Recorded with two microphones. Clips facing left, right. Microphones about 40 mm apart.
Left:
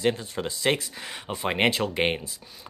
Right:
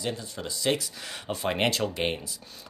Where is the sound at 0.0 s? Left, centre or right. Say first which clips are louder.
Left 7 dB; left.